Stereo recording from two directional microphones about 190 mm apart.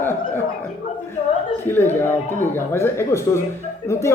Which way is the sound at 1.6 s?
10° left (ahead or behind).